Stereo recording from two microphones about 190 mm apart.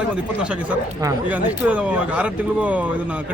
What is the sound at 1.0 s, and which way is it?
Speech, 10° right (ahead or behind).